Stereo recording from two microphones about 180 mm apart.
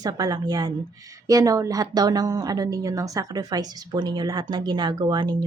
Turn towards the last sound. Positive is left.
turn(degrees=-20)  # may be behind; listen again after turning